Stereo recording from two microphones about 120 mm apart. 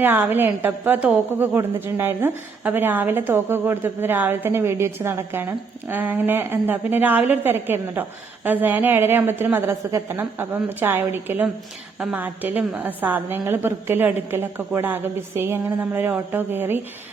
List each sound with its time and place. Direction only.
0.0 s a woman's voice: 15° right (ahead or behind)